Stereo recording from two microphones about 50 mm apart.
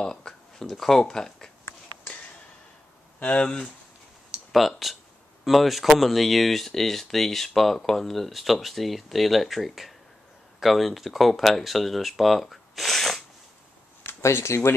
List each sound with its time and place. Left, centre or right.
0.0 s speech: centre
3.2 s speech: left
4.5 s speech: centre
14.2 s speech: left